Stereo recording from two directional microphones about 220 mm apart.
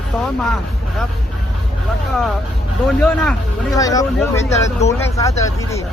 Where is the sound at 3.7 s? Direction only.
15° left (ahead or behind).